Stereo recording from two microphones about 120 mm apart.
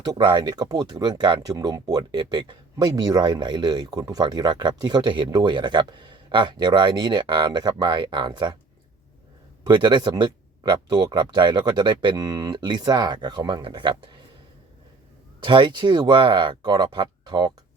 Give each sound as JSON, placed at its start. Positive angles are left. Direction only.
{"t": 0.1, "sound": "speech", "side_deg": -35}
{"t": 9.6, "sound": "speech", "side_deg": -40}
{"t": 15.4, "sound": "speech", "side_deg": -40}